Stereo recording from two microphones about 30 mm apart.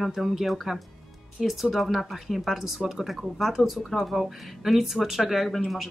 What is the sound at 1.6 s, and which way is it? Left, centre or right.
Speech, centre.